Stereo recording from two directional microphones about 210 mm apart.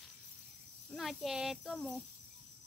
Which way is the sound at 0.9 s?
Centre (ahead or behind).